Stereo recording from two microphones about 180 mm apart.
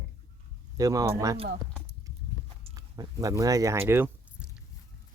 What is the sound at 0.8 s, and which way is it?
Speech, 20° right (ahead or behind).